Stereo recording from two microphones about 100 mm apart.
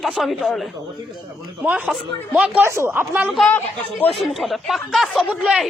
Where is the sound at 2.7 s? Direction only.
25° right (ahead or behind).